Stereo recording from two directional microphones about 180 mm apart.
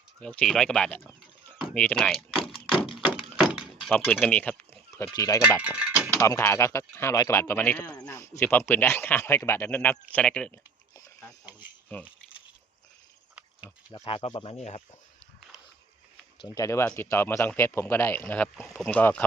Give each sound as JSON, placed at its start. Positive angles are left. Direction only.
{"t": 0.2, "sound": "speech", "side_deg": 5}
{"t": 2.7, "sound": "a sound", "side_deg": 30}
{"t": 3.1, "sound": "thunk", "side_deg": -5}
{"t": 3.6, "sound": "speech", "side_deg": 0}
{"t": 5.5, "sound": "speech", "side_deg": -5}
{"t": 6.1, "sound": "speech", "side_deg": 15}
{"t": 11.9, "sound": "speech", "side_deg": 10}
{"t": 13.9, "sound": "speech", "side_deg": 30}
{"t": 16.6, "sound": "speech", "side_deg": 15}